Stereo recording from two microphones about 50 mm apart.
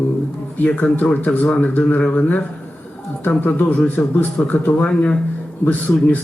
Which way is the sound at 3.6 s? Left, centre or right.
Left.